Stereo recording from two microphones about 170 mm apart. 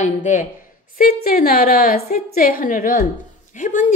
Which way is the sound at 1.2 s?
60° left (ahead or behind).